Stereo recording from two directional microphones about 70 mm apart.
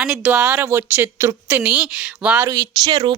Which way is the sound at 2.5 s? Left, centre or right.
Right.